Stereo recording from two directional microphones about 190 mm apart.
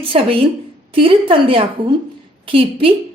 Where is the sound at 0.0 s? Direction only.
30° right (ahead or behind).